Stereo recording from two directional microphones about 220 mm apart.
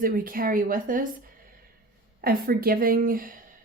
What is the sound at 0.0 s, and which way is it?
A woman's voice, 40° right (ahead or behind).